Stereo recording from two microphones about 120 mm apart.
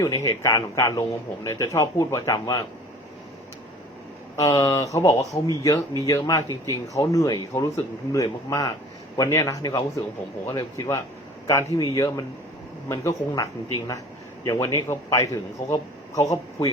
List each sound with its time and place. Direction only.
0.0 s a man's voice: 30° left (ahead or behind)
4.4 s a man's voice: 25° left (ahead or behind)